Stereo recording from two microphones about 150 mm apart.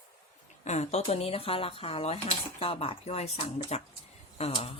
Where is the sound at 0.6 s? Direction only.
45° left (ahead or behind).